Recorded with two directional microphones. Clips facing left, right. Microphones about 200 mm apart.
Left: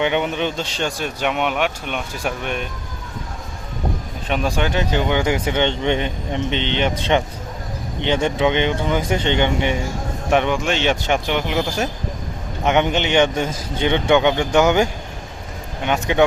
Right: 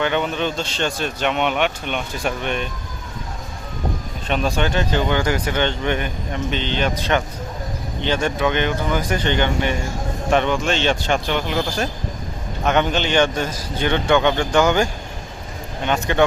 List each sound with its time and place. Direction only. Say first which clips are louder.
0.0 s a man's voice: left 1 dB; 15° left (ahead or behind)
4.3 s a man's voice: even; 10° left (ahead or behind)